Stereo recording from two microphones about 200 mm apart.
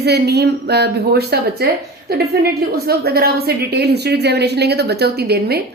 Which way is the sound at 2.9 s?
50° right (ahead or behind).